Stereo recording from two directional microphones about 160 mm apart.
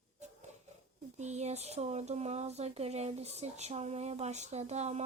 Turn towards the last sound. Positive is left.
turn(degrees=-45)  # may be behind; listen again after turning